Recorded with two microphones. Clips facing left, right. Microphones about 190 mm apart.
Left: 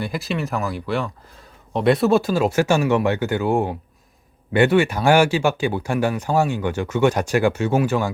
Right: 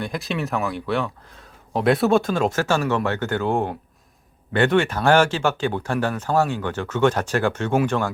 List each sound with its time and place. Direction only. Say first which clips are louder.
0.0 s speech: left 1 dB; centre (ahead or behind)